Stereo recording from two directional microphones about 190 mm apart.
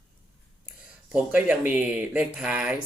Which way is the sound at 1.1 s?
5° right (ahead or behind).